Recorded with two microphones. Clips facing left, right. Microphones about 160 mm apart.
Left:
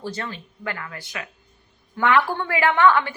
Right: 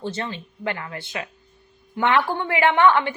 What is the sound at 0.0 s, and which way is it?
A woman's voice, 25° right (ahead or behind).